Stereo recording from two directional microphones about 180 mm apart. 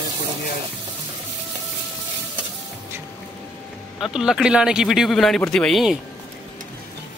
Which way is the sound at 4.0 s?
5° right (ahead or behind).